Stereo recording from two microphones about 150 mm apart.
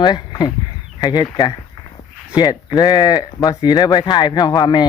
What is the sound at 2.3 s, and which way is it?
Speech, 25° left (ahead or behind).